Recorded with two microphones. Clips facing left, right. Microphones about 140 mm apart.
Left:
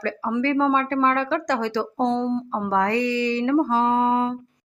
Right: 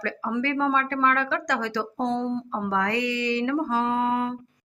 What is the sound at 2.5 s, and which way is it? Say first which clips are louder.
Speech: left 4 dB; 30° left (ahead or behind).